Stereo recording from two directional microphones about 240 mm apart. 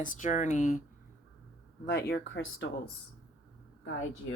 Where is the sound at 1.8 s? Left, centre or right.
Left.